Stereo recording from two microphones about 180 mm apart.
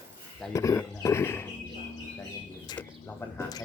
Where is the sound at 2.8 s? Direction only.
10° left (ahead or behind).